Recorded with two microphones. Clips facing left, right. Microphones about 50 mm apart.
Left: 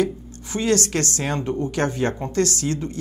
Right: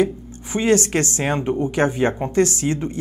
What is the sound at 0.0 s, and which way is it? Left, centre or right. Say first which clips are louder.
A woman's voice: right 3 dB; right.